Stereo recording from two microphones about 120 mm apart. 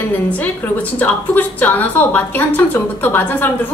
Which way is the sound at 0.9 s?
15° left (ahead or behind).